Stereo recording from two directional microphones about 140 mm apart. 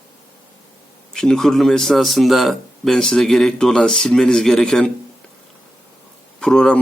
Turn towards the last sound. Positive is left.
turn(degrees=5)  # may be behind; listen again after turning